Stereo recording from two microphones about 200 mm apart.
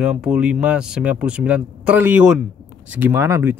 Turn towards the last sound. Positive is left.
turn(degrees=-10)  # may be behind; listen again after turning